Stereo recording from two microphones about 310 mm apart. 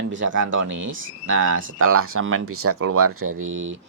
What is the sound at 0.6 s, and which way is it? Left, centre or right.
Speech, right.